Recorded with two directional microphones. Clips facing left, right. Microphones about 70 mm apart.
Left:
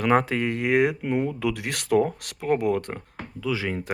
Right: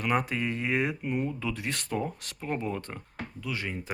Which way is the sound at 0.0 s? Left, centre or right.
Left.